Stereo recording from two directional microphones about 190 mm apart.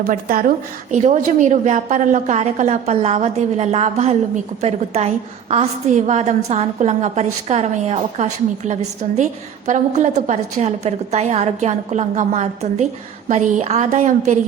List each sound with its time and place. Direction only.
0.1 s a woman's voice: 45° right (ahead or behind)
5.5 s a woman's voice: 35° right (ahead or behind)